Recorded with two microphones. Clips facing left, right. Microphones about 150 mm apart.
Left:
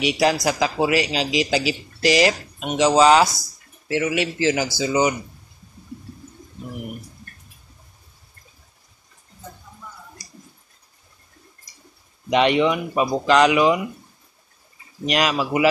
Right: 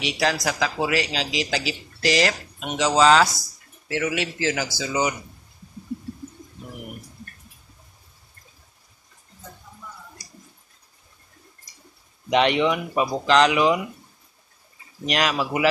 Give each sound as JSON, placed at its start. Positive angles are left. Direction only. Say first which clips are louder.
{"t": 0.0, "sound": "speech", "louder": "left 5 dB", "side_deg": 10}
{"t": 12.3, "sound": "speech", "louder": "left 2 dB", "side_deg": 5}
{"t": 15.0, "sound": "speech", "louder": "left 2 dB", "side_deg": 5}